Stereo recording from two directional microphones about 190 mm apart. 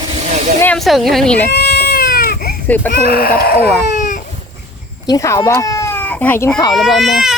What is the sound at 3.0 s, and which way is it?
Speech, 55° left (ahead or behind).